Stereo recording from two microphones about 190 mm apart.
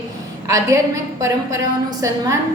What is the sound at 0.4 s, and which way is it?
Speech, 15° right (ahead or behind).